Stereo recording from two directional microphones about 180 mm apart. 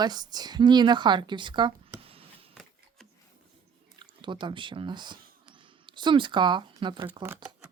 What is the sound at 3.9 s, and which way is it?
Speech, 25° right (ahead or behind).